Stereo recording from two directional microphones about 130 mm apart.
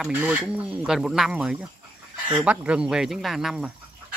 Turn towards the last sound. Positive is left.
turn(degrees=-5)  # may be behind; listen again after turning